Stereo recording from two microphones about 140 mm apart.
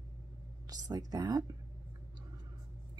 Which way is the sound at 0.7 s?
25° right (ahead or behind).